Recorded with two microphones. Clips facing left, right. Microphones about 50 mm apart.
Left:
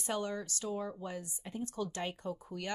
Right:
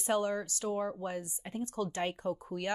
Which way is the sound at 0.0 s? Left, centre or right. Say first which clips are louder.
Right 5 dB; right.